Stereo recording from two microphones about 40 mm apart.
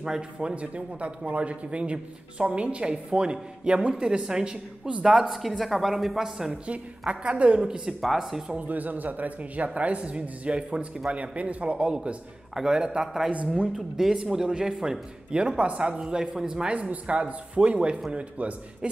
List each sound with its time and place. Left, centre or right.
0.0 s speech: right
0.6 s speech: right
5.6 s speech: centre
6.7 s speech: right
7.6 s speech: centre
8.0 s speech: centre
8.5 s speech: right
13.7 s speech: centre; by 16.0 s right
16.0 s speech: centre
16.9 s speech: right